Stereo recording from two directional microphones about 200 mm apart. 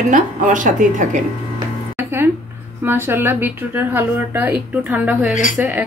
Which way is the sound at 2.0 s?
10° right (ahead or behind).